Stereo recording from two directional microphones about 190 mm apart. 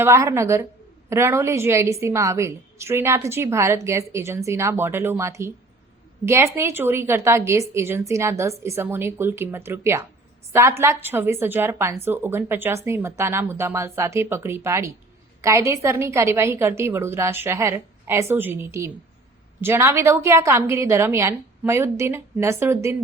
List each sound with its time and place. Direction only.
0.0 s a woman's voice: 15° right (ahead or behind)